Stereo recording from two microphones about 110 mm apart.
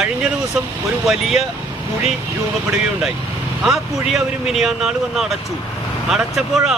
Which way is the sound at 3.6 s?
5° right (ahead or behind).